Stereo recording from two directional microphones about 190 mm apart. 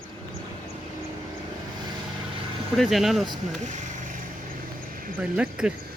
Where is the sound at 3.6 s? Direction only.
40° right (ahead or behind).